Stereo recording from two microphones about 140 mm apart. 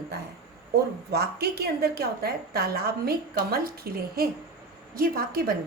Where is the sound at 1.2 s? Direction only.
90° right.